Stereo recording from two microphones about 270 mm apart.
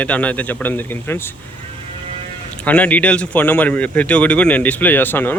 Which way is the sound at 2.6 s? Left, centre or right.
Centre.